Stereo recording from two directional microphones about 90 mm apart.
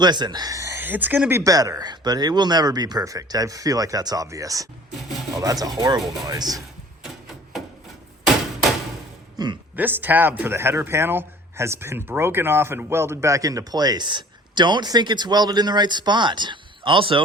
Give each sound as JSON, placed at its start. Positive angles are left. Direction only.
{"t": 0.0, "sound": "speech", "side_deg": -55}
{"t": 0.8, "sound": "speech", "side_deg": -20}
{"t": 1.5, "sound": "speech", "side_deg": -40}
{"t": 4.9, "sound": "a sound", "side_deg": 0}
{"t": 5.3, "sound": "speech", "side_deg": -40}
{"t": 9.4, "sound": "a woman's voice", "side_deg": -45}
{"t": 9.7, "sound": "speech", "side_deg": -20}